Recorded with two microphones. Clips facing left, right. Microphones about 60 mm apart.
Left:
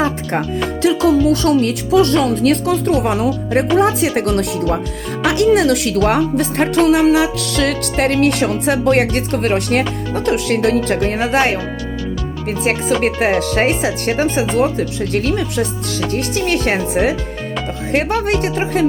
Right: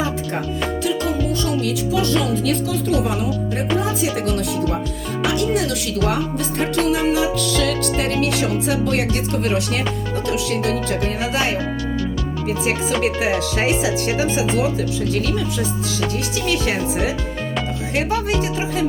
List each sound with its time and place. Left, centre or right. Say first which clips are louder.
0.0 s speech: left 5 dB; left
1.6 s speech: left 6 dB; left
5.2 s speech: left 7 dB; left
6.0 s music: left 4 dB; left